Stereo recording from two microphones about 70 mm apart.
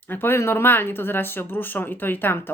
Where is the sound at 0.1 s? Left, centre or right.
Left.